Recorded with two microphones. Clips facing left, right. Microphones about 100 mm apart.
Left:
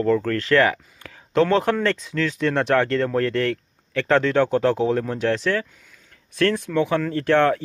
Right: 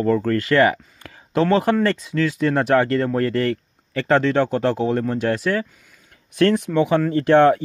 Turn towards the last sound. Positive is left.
turn(degrees=-15)  # may be behind; listen again after turning